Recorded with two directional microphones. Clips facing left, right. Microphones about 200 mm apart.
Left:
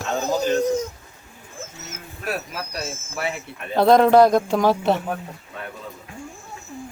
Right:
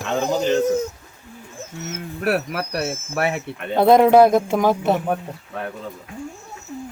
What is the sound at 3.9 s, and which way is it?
Speech, 10° right (ahead or behind).